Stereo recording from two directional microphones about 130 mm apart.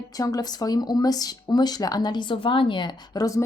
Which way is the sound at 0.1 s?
30° left (ahead or behind).